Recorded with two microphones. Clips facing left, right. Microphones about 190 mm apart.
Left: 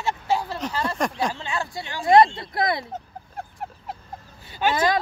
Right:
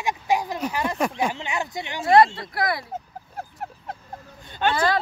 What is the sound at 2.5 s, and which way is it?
Speech, 20° left (ahead or behind).